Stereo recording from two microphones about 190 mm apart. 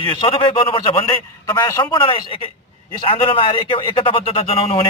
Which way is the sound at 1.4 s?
15° left (ahead or behind).